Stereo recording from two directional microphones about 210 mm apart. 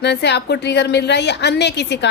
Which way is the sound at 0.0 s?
55° left (ahead or behind).